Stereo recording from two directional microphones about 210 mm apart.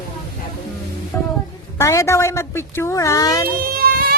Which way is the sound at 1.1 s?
10° left (ahead or behind).